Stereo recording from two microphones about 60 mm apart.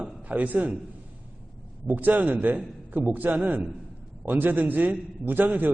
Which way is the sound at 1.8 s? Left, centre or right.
Right.